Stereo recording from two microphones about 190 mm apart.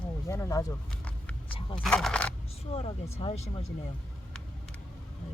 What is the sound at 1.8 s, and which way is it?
Speech, 5° left (ahead or behind).